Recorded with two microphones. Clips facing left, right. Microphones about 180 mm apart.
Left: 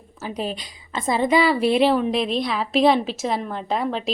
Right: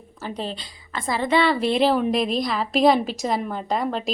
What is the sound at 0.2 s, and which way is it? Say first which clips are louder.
A woman's voice: left 2 dB; 10° left (ahead or behind).